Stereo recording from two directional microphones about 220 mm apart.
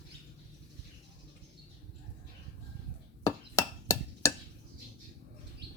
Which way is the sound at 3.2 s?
15° left (ahead or behind).